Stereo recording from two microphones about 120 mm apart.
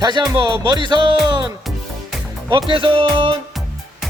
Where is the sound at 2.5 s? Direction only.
40° right (ahead or behind).